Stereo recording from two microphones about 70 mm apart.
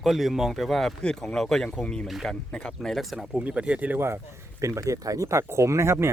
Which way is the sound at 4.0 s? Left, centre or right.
Right.